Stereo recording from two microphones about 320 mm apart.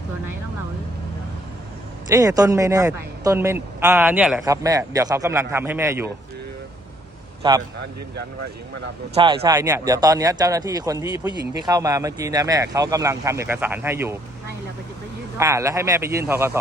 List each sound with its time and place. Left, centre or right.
2.0 s a man's voice: centre
7.4 s a man's voice: centre
9.1 s a man's voice: centre
15.4 s a man's voice: centre